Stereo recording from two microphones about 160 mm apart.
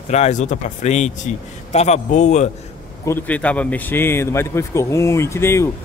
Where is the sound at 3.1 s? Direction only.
10° left (ahead or behind).